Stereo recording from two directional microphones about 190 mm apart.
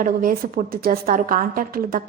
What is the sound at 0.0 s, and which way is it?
A woman's voice, 50° right (ahead or behind).